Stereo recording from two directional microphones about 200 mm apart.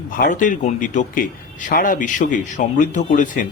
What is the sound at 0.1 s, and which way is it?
A man's voice, 40° left (ahead or behind).